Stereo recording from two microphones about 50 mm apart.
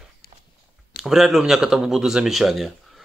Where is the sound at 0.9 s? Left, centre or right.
Centre.